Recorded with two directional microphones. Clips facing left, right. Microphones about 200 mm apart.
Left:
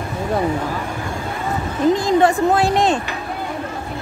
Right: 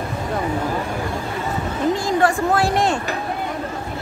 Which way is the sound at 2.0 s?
20° left (ahead or behind).